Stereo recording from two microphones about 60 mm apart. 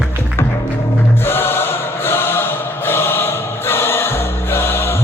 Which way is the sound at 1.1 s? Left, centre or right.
Left.